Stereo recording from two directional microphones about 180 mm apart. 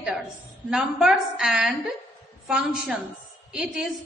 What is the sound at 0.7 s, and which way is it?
A woman's voice, centre (ahead or behind).